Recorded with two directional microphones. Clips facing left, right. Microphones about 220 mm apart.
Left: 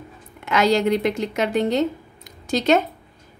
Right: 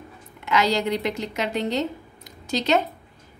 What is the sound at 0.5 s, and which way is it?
A woman's voice, 50° left (ahead or behind).